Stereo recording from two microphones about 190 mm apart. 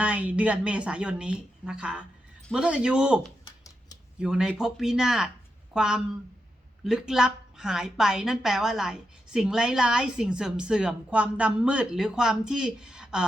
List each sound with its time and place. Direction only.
0.0 s a woman's voice: 5° right (ahead or behind)
3.4 s a sound: 20° left (ahead or behind)
4.2 s a woman's voice: 5° right (ahead or behind)